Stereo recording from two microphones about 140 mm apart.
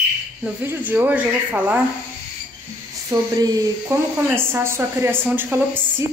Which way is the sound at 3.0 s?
25° right (ahead or behind).